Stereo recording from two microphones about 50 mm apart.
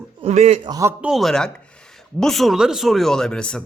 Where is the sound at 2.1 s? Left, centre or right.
Centre.